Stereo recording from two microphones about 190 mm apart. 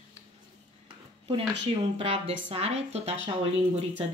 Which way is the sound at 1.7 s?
30° right (ahead or behind).